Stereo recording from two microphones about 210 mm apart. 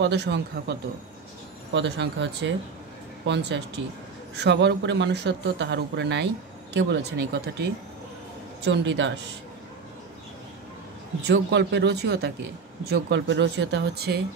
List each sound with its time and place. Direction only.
0.0 s a man's voice: 55° right (ahead or behind)
11.2 s a man's voice: 55° right (ahead or behind)